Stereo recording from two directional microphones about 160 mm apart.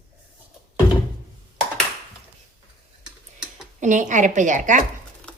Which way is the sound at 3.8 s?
50° right (ahead or behind).